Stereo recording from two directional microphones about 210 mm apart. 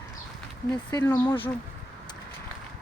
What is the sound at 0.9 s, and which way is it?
Speech, 15° left (ahead or behind).